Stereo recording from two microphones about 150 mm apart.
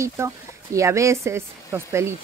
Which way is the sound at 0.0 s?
20° right (ahead or behind).